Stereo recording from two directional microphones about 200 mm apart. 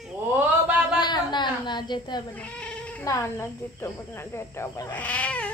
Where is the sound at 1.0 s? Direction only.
20° left (ahead or behind).